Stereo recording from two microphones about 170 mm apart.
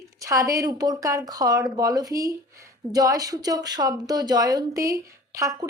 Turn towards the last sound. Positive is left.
turn(degrees=-20)  # may be behind; listen again after turning